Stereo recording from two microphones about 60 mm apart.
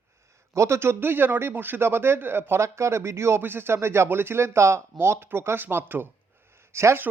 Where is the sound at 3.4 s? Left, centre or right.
Right.